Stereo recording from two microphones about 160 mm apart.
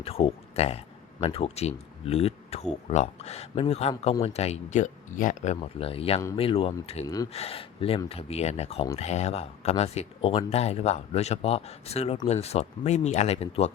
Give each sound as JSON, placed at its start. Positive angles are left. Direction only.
{"t": 0.0, "sound": "speech", "side_deg": 35}
{"t": 5.5, "sound": "speech", "side_deg": 35}